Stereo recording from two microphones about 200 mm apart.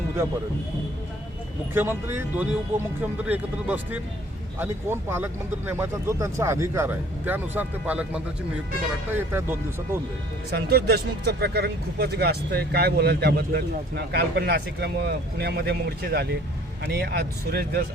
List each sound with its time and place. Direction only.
1.7 s speech: 10° right (ahead or behind)
10.5 s speech: 50° right (ahead or behind)